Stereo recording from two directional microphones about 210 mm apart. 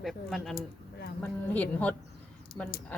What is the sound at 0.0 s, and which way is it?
Speech, centre (ahead or behind).